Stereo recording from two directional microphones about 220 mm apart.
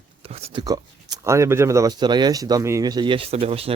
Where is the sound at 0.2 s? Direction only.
25° right (ahead or behind).